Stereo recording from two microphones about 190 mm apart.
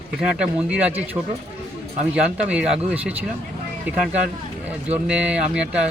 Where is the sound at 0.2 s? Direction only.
5° right (ahead or behind).